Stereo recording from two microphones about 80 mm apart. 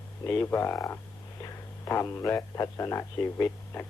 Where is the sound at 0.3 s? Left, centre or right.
Left.